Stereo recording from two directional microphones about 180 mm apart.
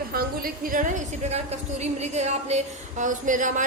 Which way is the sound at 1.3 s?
40° right (ahead or behind).